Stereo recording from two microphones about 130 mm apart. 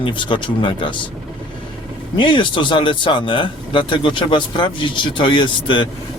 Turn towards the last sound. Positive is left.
turn(degrees=40)  # may be behind; listen again after turning